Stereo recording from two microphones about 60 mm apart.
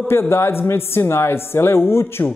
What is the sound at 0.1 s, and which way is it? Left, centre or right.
Speech, left.